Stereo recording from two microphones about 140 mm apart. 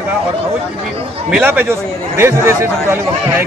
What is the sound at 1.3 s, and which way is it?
Speech, 10° right (ahead or behind).